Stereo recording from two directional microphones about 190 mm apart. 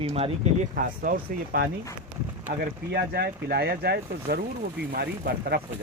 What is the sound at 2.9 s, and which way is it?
Speech, 55° right (ahead or behind).